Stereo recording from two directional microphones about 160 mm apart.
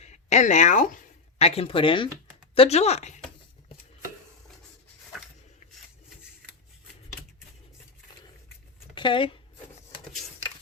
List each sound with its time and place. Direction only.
0.0 s speech: 45° left (ahead or behind)
1.4 s a woman's voice: 40° left (ahead or behind)
9.0 s speech: 30° left (ahead or behind)